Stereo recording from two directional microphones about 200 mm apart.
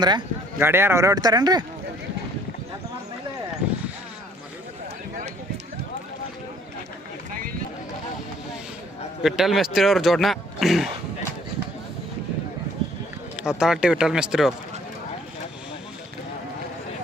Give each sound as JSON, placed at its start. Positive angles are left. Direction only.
{"t": 0.0, "sound": "speech", "side_deg": -20}
{"t": 9.2, "sound": "speech", "side_deg": 0}
{"t": 13.3, "sound": "speech", "side_deg": -5}